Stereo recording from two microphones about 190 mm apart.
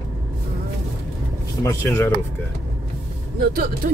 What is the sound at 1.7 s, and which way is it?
Speech, 15° left (ahead or behind).